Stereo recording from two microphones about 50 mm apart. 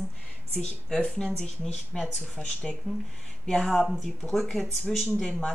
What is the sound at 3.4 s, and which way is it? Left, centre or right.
Speech, centre.